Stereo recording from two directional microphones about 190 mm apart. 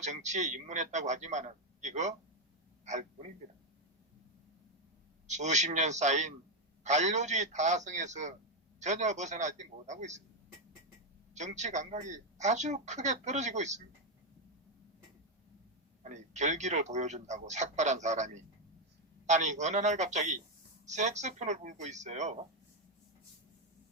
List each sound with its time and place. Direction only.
0.0 s a man's voice: 40° right (ahead or behind)
5.3 s a man's voice: 40° right (ahead or behind)
11.3 s a man's voice: 40° right (ahead or behind)
16.0 s a man's voice: 40° right (ahead or behind)